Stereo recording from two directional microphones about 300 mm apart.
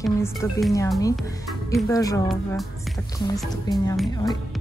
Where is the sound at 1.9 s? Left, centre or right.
Centre.